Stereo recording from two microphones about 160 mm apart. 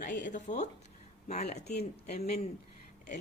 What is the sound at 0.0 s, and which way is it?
Speech, 55° left (ahead or behind).